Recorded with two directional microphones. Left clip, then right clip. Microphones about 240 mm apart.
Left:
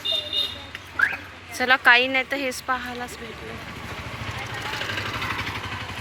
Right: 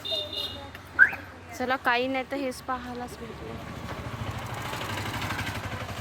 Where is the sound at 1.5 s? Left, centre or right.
Centre.